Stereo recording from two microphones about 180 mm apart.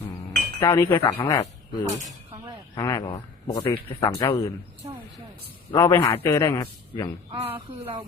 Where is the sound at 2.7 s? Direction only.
25° left (ahead or behind).